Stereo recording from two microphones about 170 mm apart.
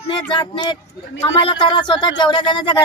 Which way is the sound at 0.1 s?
30° left (ahead or behind).